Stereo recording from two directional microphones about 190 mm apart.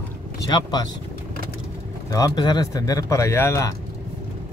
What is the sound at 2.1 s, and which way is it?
Speech, 20° left (ahead or behind).